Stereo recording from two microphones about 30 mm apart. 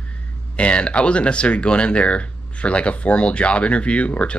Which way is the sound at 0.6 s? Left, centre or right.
Left.